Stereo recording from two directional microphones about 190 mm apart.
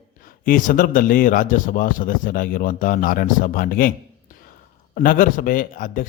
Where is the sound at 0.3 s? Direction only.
45° left (ahead or behind).